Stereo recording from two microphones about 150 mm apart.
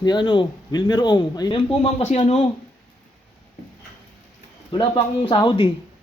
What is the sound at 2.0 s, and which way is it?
Speech, 50° left (ahead or behind).